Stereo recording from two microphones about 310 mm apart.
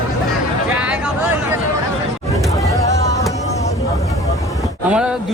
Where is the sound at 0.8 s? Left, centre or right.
Centre.